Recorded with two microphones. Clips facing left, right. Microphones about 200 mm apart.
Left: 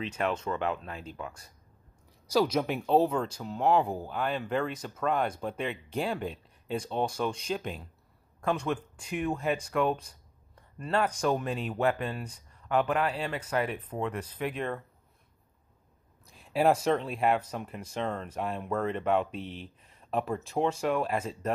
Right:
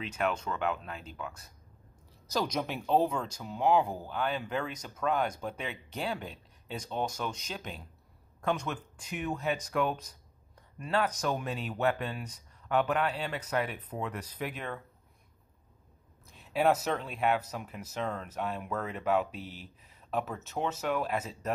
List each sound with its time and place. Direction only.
0.2 s speech: centre (ahead or behind)
2.2 s speech: 10° left (ahead or behind)
11.1 s speech: 10° left (ahead or behind)
11.3 s speech: centre (ahead or behind)
16.3 s speech: centre (ahead or behind)